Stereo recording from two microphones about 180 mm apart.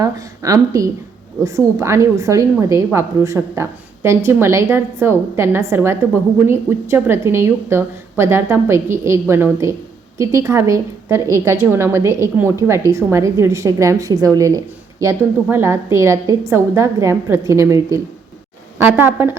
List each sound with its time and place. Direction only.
0.0 s a woman's voice: 20° right (ahead or behind)